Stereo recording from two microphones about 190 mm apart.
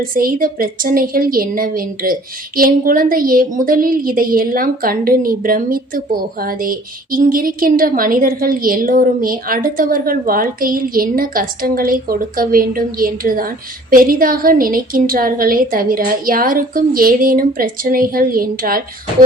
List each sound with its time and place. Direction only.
0.0 s a woman's voice: 50° right (ahead or behind)